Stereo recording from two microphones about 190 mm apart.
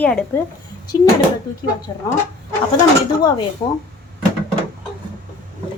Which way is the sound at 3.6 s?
25° left (ahead or behind).